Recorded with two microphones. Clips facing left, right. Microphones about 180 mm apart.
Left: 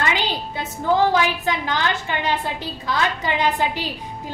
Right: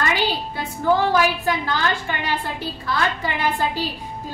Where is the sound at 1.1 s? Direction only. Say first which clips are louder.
Right 1 dB; 20° left (ahead or behind).